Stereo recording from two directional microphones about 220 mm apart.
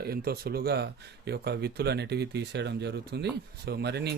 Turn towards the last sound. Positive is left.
turn(degrees=-50)  # may be behind; listen again after turning